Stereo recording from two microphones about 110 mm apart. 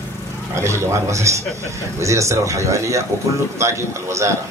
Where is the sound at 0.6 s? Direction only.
25° right (ahead or behind).